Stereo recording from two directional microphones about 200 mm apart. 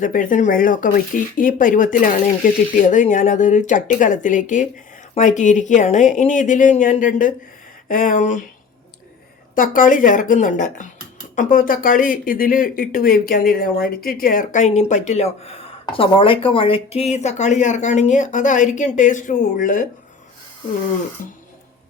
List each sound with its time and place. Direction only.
0.0 s speech: 40° left (ahead or behind)
9.6 s speech: 40° left (ahead or behind)
21.2 s music: 45° left (ahead or behind)